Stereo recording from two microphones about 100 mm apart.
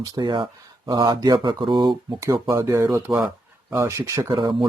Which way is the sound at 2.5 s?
30° right (ahead or behind).